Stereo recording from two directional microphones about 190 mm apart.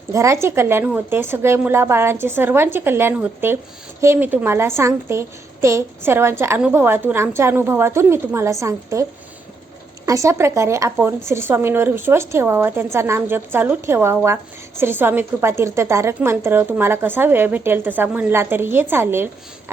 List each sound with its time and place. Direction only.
0.1 s a woman's voice: 15° right (ahead or behind)
10.1 s a woman's voice: 15° right (ahead or behind)